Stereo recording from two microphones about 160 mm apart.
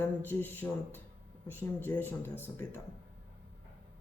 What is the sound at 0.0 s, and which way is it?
Speech, 15° left (ahead or behind).